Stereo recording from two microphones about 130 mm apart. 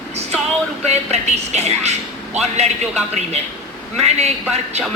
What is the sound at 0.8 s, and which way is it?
Speech, 55° right (ahead or behind).